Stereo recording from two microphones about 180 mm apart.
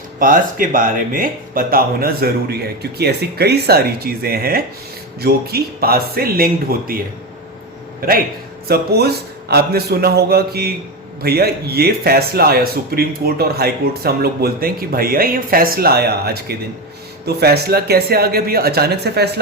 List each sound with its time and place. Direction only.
0.2 s speech: 50° right (ahead or behind)
8.6 s speech: 60° right (ahead or behind)